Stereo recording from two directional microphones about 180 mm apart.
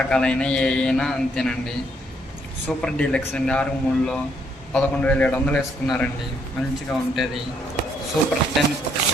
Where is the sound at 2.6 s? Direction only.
5° left (ahead or behind).